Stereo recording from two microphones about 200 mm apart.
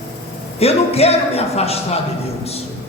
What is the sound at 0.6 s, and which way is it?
A man's voice, 30° left (ahead or behind).